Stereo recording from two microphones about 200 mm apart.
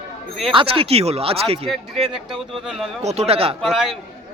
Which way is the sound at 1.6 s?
Centre (ahead or behind).